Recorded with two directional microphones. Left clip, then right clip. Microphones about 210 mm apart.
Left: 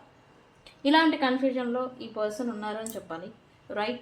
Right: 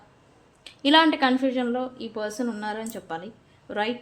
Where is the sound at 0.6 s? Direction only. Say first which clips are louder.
Right 4 dB; 30° right (ahead or behind).